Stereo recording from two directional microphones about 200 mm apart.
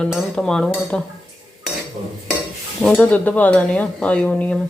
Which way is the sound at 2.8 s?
5° left (ahead or behind).